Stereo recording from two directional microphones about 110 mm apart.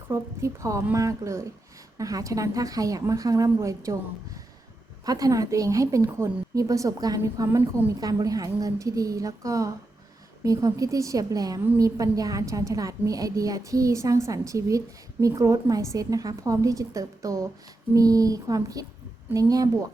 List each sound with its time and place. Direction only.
0.1 s a woman's voice: 30° right (ahead or behind)
5.0 s a woman's voice: 30° right (ahead or behind)
7.9 s a woman's voice: 35° right (ahead or behind)